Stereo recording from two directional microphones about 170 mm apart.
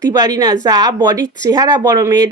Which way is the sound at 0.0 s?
20° right (ahead or behind).